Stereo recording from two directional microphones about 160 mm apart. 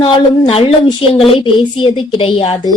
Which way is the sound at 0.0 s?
35° left (ahead or behind).